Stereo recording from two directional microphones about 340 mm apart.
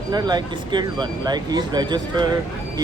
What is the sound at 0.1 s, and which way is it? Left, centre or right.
Speech, centre.